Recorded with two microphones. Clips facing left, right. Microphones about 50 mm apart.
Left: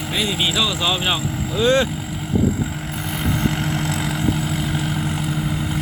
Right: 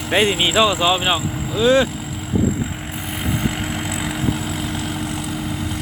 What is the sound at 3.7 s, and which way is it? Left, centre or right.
Vehicle, centre.